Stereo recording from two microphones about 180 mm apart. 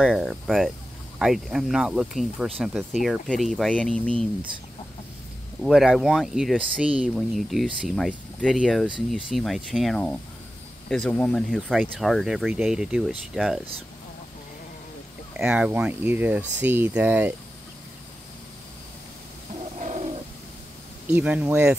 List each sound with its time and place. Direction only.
0.0 s speech: centre (ahead or behind)
5.6 s speech: centre (ahead or behind)
15.3 s speech: 5° right (ahead or behind)
19.8 s bird: 45° right (ahead or behind)
21.1 s speech: 10° right (ahead or behind)